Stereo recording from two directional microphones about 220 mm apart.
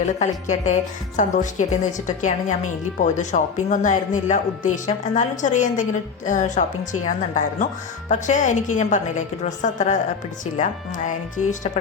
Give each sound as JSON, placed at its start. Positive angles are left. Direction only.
{"t": 0.0, "sound": "speech", "side_deg": 35}